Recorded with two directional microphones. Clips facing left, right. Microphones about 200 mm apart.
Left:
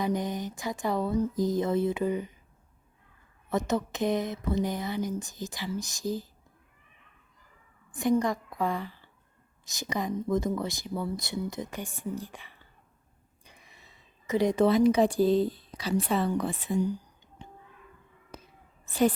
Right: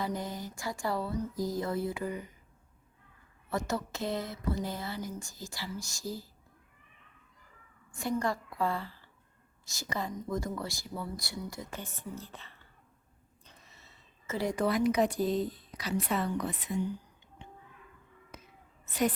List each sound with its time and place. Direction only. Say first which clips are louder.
0.0 s speech: left 6 dB; 20° left (ahead or behind)
3.5 s speech: left 5 dB; 20° left (ahead or behind)
7.9 s a woman's voice: left 6 dB; 20° left (ahead or behind)
18.9 s a woman's voice: left 5 dB; 30° left (ahead or behind)